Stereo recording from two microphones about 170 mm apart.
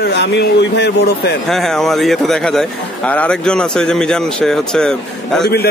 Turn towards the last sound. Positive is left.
turn(degrees=5)  # may be behind; listen again after turning